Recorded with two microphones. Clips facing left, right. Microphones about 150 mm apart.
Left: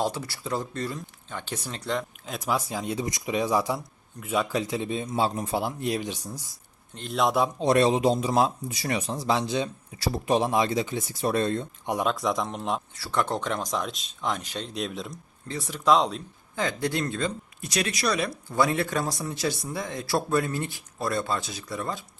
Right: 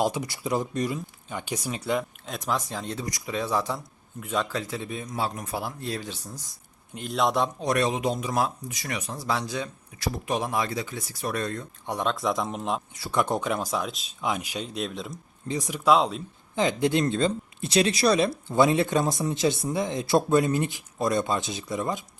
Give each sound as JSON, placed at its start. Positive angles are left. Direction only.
{"t": 0.0, "sound": "speech", "side_deg": -15}
{"t": 6.9, "sound": "a man's voice", "side_deg": 0}
{"t": 7.6, "sound": "speech", "side_deg": 25}
{"t": 11.9, "sound": "a man's voice", "side_deg": 0}
{"t": 12.9, "sound": "speech", "side_deg": -15}
{"t": 15.4, "sound": "speech", "side_deg": -15}
{"t": 16.6, "sound": "speech", "side_deg": -20}